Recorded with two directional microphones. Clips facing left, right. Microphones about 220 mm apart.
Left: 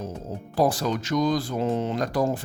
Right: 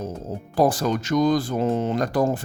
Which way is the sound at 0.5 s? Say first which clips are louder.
Right 3 dB; 50° right (ahead or behind).